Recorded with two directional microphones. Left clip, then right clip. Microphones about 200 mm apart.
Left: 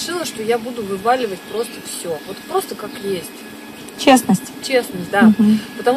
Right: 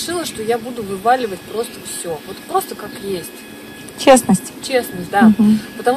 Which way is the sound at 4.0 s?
20° right (ahead or behind).